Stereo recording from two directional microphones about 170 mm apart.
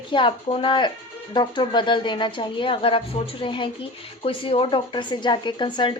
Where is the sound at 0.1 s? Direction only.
30° left (ahead or behind).